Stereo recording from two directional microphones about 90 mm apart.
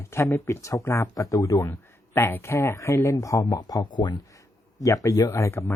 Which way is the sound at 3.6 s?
50° left (ahead or behind).